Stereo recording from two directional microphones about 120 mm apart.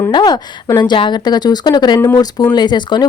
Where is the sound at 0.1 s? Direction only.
35° left (ahead or behind).